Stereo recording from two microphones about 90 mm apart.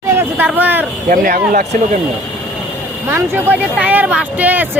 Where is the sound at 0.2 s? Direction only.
20° right (ahead or behind).